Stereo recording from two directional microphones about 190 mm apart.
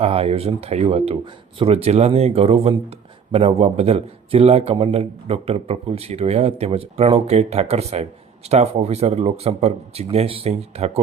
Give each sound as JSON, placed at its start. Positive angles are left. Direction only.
{"t": 0.0, "sound": "speech", "side_deg": -30}